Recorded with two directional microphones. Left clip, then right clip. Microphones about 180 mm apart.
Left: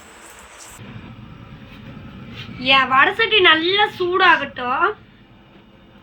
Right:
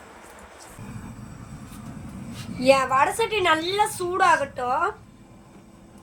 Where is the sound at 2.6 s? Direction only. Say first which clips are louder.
Left 4 dB; 90° right.